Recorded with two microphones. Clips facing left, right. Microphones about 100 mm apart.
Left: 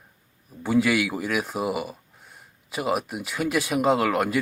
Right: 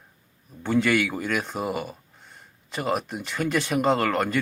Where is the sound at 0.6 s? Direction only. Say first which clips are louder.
Left 1 dB; 5° left (ahead or behind).